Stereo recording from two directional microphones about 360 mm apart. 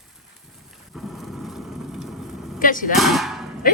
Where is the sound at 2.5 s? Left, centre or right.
Left.